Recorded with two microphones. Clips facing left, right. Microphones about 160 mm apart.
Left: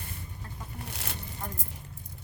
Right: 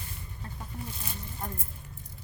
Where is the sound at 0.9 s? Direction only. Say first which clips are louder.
Left 1 dB; 70° left (ahead or behind).